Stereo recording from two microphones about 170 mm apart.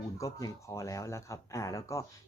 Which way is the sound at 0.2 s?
20° left (ahead or behind).